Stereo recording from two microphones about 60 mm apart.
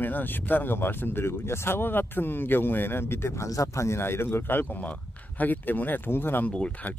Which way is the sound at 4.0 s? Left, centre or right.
Left.